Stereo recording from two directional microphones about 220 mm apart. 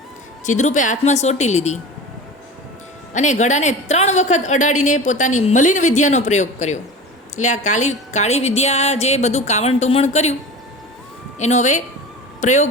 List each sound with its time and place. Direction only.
0.4 s a woman's voice: 35° left (ahead or behind)
3.1 s a woman's voice: 35° left (ahead or behind)
11.3 s a woman's voice: 30° left (ahead or behind)